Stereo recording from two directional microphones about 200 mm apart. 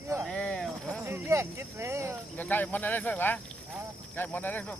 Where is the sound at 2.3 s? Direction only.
10° left (ahead or behind).